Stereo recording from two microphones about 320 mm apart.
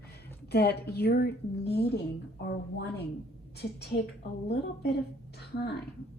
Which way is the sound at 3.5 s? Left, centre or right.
Left.